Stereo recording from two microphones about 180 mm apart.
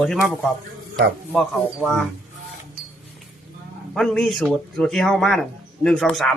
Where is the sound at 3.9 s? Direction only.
5° left (ahead or behind).